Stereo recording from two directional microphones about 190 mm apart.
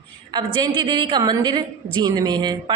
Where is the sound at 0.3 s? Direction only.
25° right (ahead or behind).